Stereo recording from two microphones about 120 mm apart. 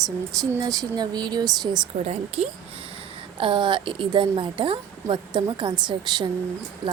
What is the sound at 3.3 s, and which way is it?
A woman's voice, 45° right (ahead or behind).